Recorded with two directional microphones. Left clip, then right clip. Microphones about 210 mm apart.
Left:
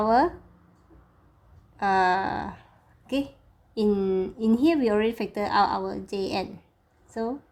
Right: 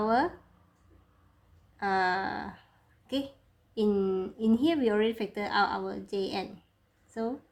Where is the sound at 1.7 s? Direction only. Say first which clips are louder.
Left 6 dB; 30° left (ahead or behind).